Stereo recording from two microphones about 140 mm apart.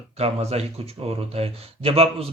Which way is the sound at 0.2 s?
45° right (ahead or behind).